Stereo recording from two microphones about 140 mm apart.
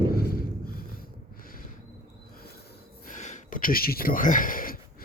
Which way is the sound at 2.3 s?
90° left.